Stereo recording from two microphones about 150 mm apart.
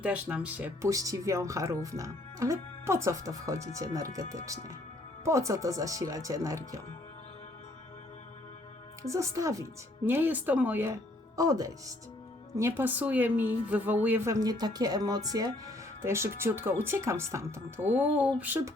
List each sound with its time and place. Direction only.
0.0 s speech: 10° right (ahead or behind)
9.0 s speech: 20° right (ahead or behind)
14.3 s speech: 25° right (ahead or behind)